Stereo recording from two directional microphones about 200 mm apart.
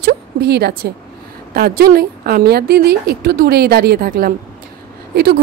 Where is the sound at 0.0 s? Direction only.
55° right (ahead or behind).